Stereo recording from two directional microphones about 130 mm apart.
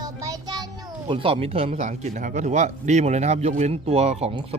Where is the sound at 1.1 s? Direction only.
45° right (ahead or behind).